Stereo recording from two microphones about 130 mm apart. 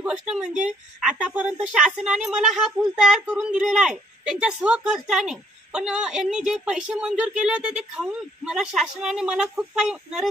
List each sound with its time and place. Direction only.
0.0 s speech: 5° right (ahead or behind)